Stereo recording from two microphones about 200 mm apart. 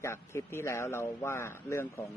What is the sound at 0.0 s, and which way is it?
Speech, 15° left (ahead or behind).